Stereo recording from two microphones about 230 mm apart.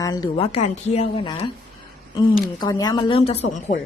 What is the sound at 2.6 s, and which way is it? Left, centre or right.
Speech, centre.